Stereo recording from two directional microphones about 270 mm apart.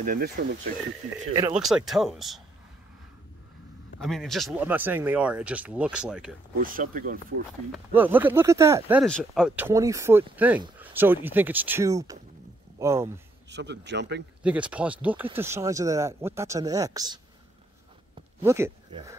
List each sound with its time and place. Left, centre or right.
0.0 s a man's voice: right
1.5 s speech: centre
4.0 s speech: centre
6.6 s a man's voice: right
7.7 s speech: centre
13.5 s a man's voice: right
14.4 s speech: centre
18.4 s speech: centre